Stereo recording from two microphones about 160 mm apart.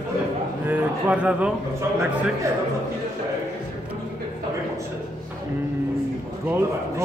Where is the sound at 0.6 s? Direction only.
10° right (ahead or behind).